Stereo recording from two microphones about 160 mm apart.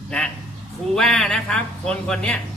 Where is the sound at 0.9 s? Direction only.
5° left (ahead or behind).